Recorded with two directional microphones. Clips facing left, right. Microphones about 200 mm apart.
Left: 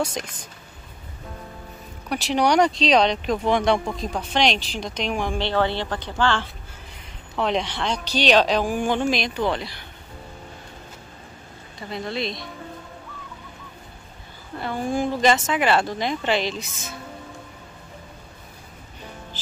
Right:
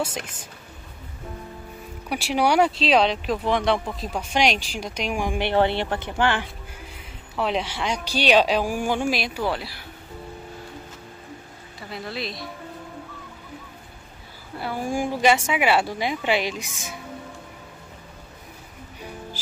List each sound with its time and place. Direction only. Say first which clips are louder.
2.0 s speech: left 1 dB; 10° right (ahead or behind)
7.3 s speech: left 1 dB; 5° right (ahead or behind)
11.9 s a woman's voice: left 4 dB; 5° right (ahead or behind)
14.6 s speech: left 2 dB; 10° right (ahead or behind)